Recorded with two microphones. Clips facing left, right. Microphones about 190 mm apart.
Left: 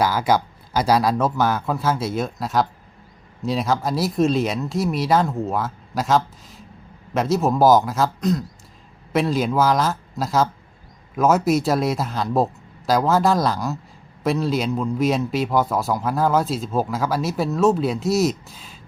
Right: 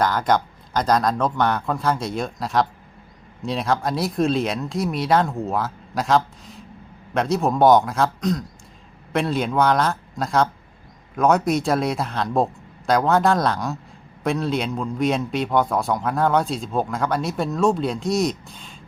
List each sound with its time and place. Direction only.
0.0 s a man's voice: 5° left (ahead or behind)